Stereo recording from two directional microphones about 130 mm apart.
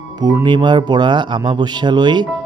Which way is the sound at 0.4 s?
35° right (ahead or behind).